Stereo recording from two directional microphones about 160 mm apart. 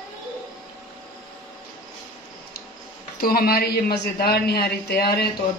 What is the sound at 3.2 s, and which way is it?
A woman's voice, 65° left (ahead or behind).